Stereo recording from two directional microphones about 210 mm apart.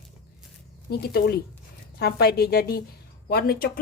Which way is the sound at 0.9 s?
50° left (ahead or behind).